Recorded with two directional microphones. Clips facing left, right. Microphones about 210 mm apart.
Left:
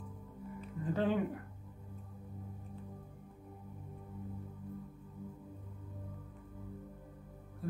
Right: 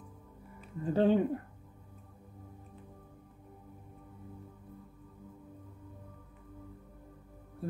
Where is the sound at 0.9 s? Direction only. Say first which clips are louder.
Right 7 dB; 30° right (ahead or behind).